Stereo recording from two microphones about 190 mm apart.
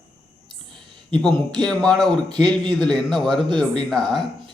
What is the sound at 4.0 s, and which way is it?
Speech, 25° right (ahead or behind).